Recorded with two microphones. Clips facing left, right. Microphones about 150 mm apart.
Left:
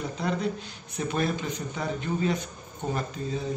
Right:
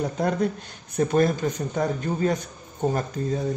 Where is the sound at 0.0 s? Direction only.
50° right (ahead or behind).